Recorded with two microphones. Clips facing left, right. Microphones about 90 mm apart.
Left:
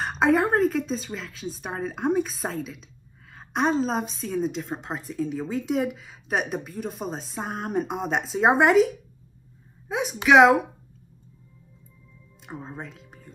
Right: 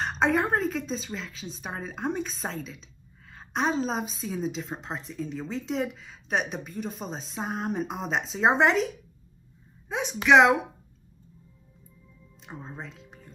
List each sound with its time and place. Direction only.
0.0 s a woman's voice: 5° left (ahead or behind)
12.4 s speech: 5° left (ahead or behind)